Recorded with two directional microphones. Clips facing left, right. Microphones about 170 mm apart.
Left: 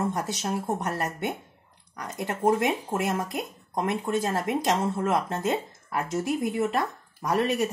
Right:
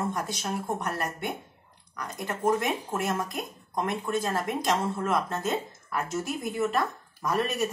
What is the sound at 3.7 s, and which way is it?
Speech, 25° left (ahead or behind).